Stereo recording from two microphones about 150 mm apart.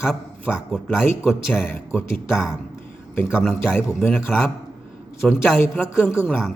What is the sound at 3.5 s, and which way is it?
Speech, 15° left (ahead or behind).